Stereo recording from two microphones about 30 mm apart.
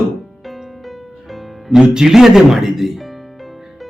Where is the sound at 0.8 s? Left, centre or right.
Centre.